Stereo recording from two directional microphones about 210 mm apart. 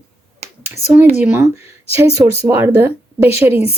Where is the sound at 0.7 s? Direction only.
10° right (ahead or behind).